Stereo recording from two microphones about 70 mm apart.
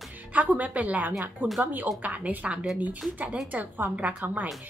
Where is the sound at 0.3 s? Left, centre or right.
Right.